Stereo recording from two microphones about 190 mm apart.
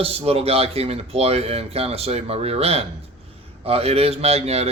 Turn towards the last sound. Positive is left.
turn(degrees=-35)  # may be behind; listen again after turning